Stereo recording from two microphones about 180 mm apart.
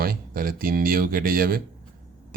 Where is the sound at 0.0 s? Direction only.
55° right (ahead or behind).